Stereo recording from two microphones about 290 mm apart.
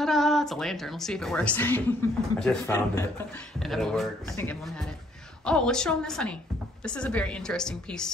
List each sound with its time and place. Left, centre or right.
0.0 s a woman's voice: centre